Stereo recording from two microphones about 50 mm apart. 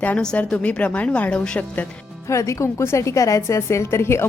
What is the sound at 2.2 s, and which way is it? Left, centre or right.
A woman's voice, left.